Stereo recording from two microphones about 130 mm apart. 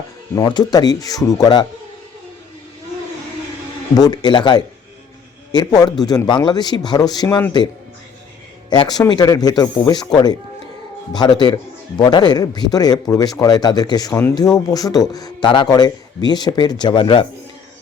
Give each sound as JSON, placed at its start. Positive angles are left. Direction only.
{"t": 0.4, "sound": "speech", "side_deg": 35}
{"t": 3.9, "sound": "speech", "side_deg": 30}
{"t": 8.7, "sound": "speech", "side_deg": 35}